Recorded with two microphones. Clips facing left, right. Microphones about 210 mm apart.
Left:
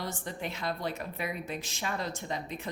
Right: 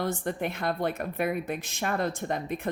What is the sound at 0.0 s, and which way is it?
A woman's voice, 55° right (ahead or behind).